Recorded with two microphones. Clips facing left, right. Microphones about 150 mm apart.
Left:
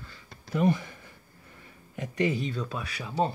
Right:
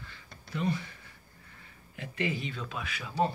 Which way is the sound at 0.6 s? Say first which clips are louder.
Left 7 dB; 55° left (ahead or behind).